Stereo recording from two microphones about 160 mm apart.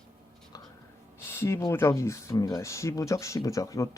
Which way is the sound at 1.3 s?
15° left (ahead or behind).